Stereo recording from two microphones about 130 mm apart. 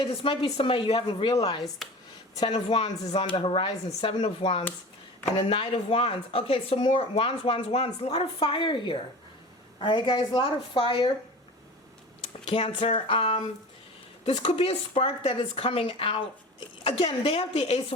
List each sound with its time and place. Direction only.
0.0 s speech: 45° left (ahead or behind)
1.8 s speech: centre (ahead or behind)
2.5 s a woman's voice: 50° left (ahead or behind)
12.5 s speech: 50° left (ahead or behind)